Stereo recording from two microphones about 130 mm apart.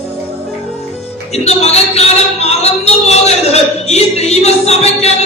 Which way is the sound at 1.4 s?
55° left (ahead or behind).